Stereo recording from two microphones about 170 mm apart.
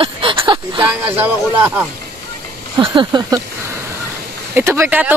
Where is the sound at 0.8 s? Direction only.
10° right (ahead or behind).